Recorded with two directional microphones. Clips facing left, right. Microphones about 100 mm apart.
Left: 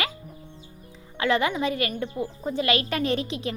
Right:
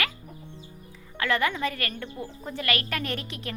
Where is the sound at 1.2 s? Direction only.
20° left (ahead or behind).